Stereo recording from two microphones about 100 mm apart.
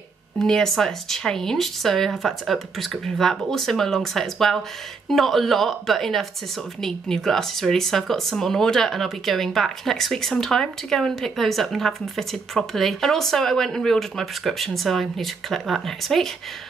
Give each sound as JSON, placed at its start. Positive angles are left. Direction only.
{"t": 0.4, "sound": "speech", "side_deg": 5}